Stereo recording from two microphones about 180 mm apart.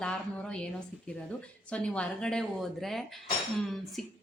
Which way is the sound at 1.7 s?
5° left (ahead or behind).